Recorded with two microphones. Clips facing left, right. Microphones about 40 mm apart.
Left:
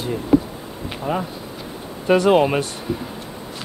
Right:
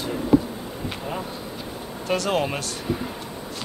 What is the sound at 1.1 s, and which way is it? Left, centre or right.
Speech, centre.